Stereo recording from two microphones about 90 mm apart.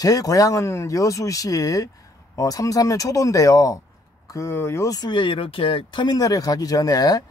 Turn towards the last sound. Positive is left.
turn(degrees=45)  # may be behind; listen again after turning